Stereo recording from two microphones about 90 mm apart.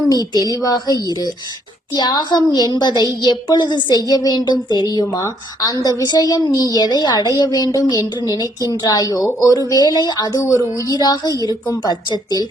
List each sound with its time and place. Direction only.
0.1 s a woman's voice: 45° left (ahead or behind)